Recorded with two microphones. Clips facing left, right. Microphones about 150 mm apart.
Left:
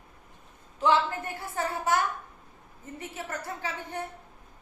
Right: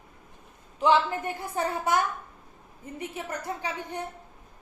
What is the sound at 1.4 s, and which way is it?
A woman's voice, 20° right (ahead or behind).